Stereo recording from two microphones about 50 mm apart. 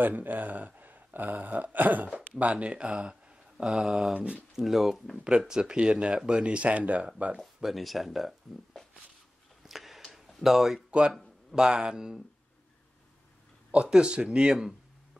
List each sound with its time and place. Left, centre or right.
0.0 s speech: right
3.6 s speech: centre
4.1 s speech: right
4.6 s speech: centre
5.4 s speech: centre
7.3 s speech: centre
9.6 s a sound: centre
10.9 s speech: right
11.5 s speech: centre
13.8 s speech: centre
14.5 s speech: centre